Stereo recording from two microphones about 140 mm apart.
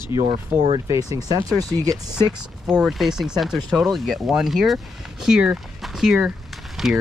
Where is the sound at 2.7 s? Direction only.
5° right (ahead or behind).